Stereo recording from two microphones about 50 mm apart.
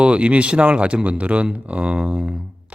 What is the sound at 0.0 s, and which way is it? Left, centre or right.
Speech, right.